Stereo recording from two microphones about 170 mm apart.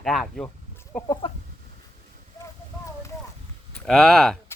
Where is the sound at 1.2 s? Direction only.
35° left (ahead or behind).